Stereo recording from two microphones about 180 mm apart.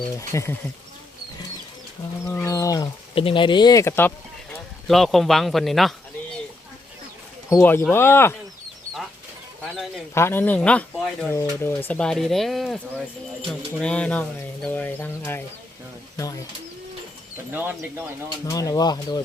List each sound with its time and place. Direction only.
0.2 s speech: 15° left (ahead or behind)
2.2 s speech: 15° left (ahead or behind)
4.9 s speech: centre (ahead or behind)
7.5 s speech: 10° left (ahead or behind)
9.7 s speech: centre (ahead or behind)
10.2 s speech: 15° left (ahead or behind)
11.3 s speech: 15° left (ahead or behind)
13.8 s speech: 5° left (ahead or behind)
17.5 s speech: 10° right (ahead or behind)
18.4 s speech: 20° left (ahead or behind)